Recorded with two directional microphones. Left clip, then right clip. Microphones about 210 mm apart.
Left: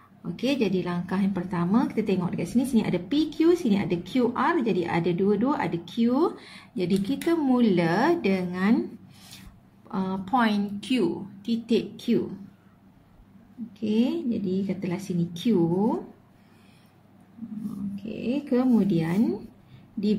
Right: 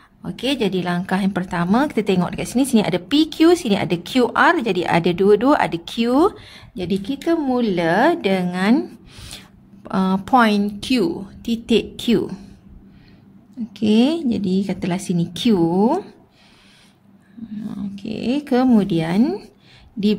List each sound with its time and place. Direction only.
0.2 s a woman's voice: 45° right (ahead or behind)
9.8 s a woman's voice: 50° right (ahead or behind)
13.7 s a woman's voice: 50° right (ahead or behind)
18.2 s a woman's voice: 50° right (ahead or behind)